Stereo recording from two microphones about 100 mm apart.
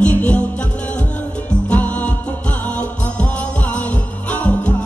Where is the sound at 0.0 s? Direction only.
15° left (ahead or behind).